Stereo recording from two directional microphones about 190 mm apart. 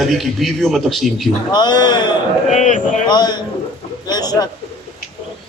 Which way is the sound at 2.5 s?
40° left (ahead or behind).